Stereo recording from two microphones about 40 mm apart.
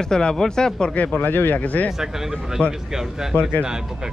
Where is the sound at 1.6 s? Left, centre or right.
Left.